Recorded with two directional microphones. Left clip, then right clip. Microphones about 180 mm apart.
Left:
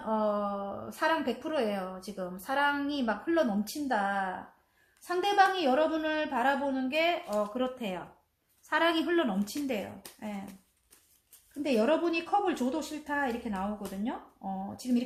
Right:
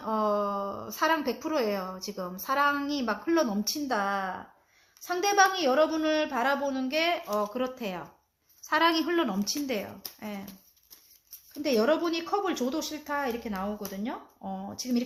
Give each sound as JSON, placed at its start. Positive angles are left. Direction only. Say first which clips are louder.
{"t": 0.0, "sound": "a sound", "louder": "right 2 dB", "side_deg": -40}
{"t": 2.0, "sound": "a woman's voice", "louder": "right 4 dB", "side_deg": -40}
{"t": 11.6, "sound": "a woman's voice", "louder": "right 2 dB", "side_deg": -45}